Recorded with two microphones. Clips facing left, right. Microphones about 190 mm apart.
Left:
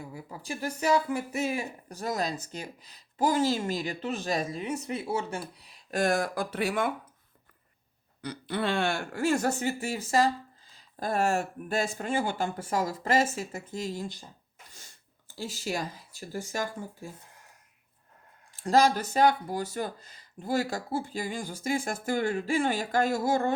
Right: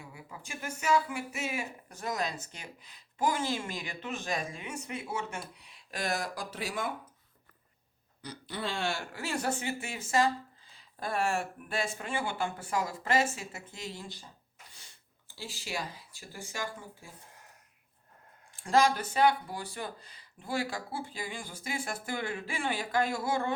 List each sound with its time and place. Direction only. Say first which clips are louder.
0.0 s speech: left 6 dB; 35° left (ahead or behind); by 6.9 s 60° left (ahead or behind)
8.2 s speech: left 7 dB; 60° left (ahead or behind); by 14.3 s 45° left (ahead or behind)
14.7 s sneeze: left 4 dB; 45° left (ahead or behind)
15.4 s speech: left 6 dB; 45° left (ahead or behind)
18.5 s speech: left 3 dB; 40° left (ahead or behind)